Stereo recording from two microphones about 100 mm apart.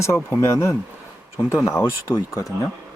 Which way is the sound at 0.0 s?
25° left (ahead or behind).